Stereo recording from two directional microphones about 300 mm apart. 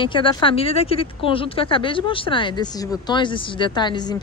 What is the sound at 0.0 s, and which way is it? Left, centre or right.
Speech, centre.